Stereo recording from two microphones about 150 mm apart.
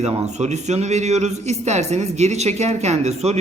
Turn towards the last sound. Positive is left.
turn(degrees=-45)  # may be behind; listen again after turning